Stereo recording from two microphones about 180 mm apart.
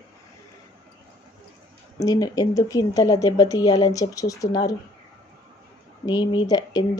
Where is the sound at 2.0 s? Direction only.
20° left (ahead or behind).